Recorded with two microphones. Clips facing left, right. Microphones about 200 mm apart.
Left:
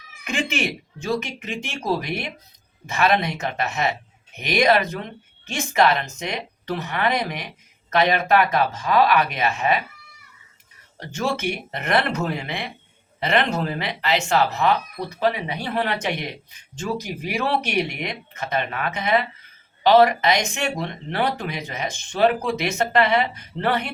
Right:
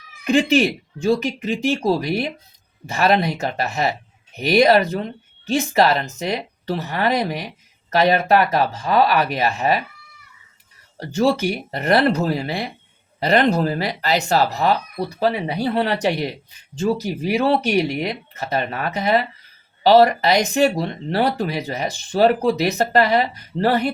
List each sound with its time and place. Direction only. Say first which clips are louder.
0.3 s speech: right 9 dB; 35° right (ahead or behind)
11.0 s speech: right 6 dB; 35° right (ahead or behind)